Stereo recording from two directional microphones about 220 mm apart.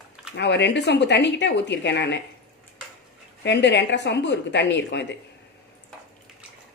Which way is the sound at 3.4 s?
50° left (ahead or behind).